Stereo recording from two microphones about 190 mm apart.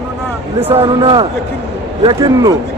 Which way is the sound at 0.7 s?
30° right (ahead or behind).